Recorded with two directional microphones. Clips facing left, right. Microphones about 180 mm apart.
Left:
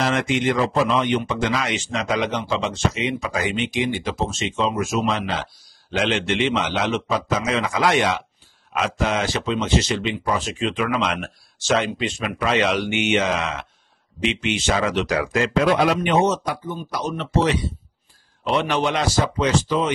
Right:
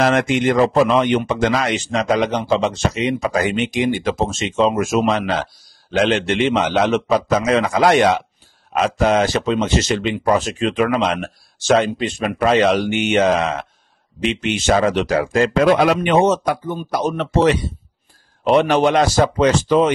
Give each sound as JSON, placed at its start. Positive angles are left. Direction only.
{"t": 0.0, "sound": "a man's voice", "side_deg": -50}
{"t": 10.9, "sound": "a man's voice", "side_deg": -35}
{"t": 15.0, "sound": "speech", "side_deg": -30}
{"t": 15.5, "sound": "a man's voice", "side_deg": -55}